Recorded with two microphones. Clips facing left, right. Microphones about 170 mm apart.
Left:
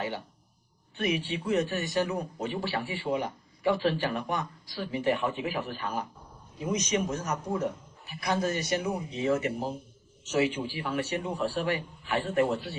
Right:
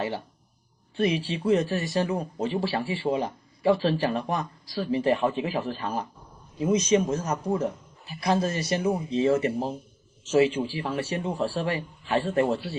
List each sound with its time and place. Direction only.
0.9 s speech: 30° right (ahead or behind)